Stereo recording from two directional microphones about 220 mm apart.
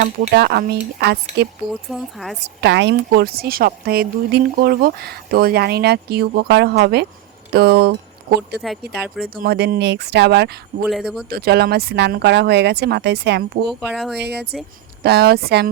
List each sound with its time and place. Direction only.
0.3 s speech: 45° right (ahead or behind)
1.9 s speech: centre (ahead or behind)
2.6 s speech: 50° right (ahead or behind)
9.0 s speech: centre (ahead or behind)
9.3 s speech: 45° right (ahead or behind)
10.8 s speech: centre (ahead or behind)
11.3 s speech: 45° right (ahead or behind)
13.9 s speech: centre (ahead or behind)
14.2 s speech: 50° right (ahead or behind)